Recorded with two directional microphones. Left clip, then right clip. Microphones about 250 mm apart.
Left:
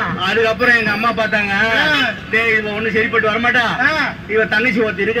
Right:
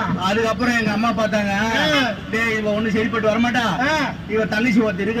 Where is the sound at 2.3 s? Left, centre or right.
Right.